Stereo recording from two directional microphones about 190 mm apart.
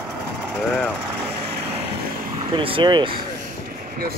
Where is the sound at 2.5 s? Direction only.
25° right (ahead or behind).